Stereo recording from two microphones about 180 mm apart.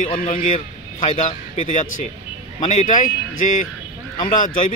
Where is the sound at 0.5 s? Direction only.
35° left (ahead or behind).